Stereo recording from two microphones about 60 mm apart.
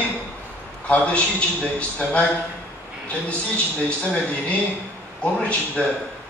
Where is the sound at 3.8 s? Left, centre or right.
Centre.